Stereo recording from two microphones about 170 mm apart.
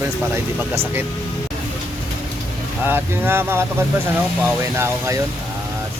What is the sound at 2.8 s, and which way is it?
Speech, 10° right (ahead or behind).